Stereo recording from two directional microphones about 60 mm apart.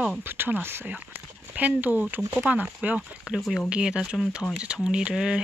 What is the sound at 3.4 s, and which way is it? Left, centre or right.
Speech, centre.